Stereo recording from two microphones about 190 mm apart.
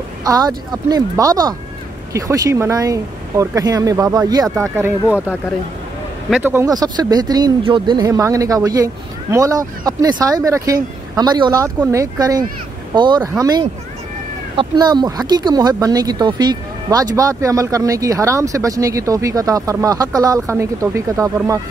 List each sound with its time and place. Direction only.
0.2 s speech: 20° right (ahead or behind)
6.3 s speech: 10° right (ahead or behind)